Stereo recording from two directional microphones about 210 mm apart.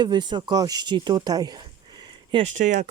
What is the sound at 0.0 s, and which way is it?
Speech, 20° right (ahead or behind).